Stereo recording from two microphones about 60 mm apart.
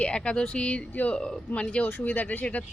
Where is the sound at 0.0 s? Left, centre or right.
Centre.